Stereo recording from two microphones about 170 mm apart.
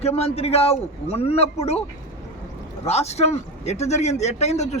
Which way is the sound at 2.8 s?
40° left (ahead or behind).